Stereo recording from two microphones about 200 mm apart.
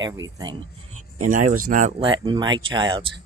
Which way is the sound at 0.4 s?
25° right (ahead or behind).